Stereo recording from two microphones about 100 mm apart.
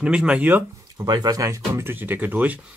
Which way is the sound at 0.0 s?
10° right (ahead or behind).